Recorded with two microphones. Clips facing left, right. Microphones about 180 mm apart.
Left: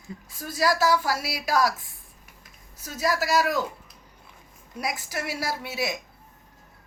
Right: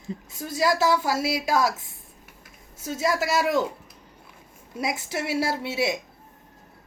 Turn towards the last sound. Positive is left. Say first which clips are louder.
# right 4 dB
turn(degrees=-25)  # may be behind; listen again after turning